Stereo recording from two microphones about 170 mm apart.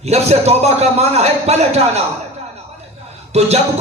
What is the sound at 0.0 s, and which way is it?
Speech, 40° right (ahead or behind).